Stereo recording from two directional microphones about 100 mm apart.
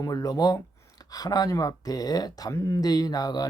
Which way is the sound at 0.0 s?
35° left (ahead or behind).